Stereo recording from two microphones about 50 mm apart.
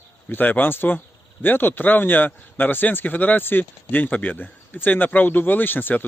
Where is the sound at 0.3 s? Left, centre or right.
Left.